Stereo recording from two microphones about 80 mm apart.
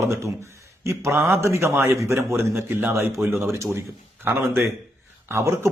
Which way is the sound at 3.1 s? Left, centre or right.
Centre.